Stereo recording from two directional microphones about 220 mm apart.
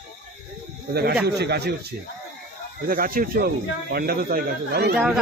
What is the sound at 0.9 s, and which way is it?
Speech, 45° right (ahead or behind).